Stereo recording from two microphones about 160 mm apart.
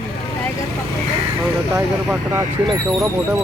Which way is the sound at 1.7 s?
15° right (ahead or behind).